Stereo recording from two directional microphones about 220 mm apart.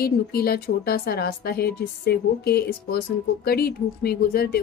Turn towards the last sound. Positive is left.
turn(degrees=45)  # may be behind; listen again after turning